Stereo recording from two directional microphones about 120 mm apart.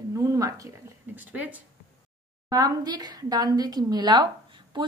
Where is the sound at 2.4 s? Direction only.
30° right (ahead or behind).